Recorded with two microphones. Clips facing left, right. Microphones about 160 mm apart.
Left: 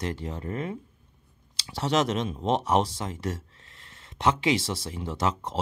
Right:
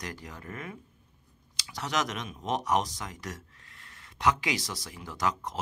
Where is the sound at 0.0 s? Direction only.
25° left (ahead or behind).